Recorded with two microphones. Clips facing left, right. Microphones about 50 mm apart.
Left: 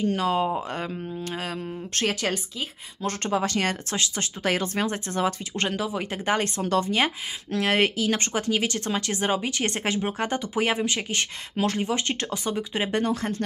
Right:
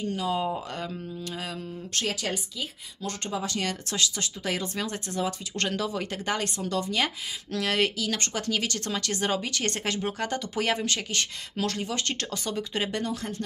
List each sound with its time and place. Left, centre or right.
0.0 s speech: left
0.4 s speech: left
2.0 s speech: left
3.9 s speech: left
4.5 s speech: left
5.6 s speech: centre
6.3 s speech: left
12.9 s speech: left